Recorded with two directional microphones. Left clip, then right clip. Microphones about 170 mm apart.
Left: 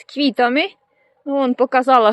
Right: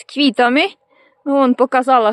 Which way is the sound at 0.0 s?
25° right (ahead or behind).